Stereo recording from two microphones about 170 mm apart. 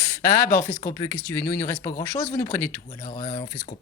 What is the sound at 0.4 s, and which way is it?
Speech, 55° left (ahead or behind).